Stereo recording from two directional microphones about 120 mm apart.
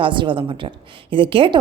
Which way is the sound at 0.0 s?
45° right (ahead or behind).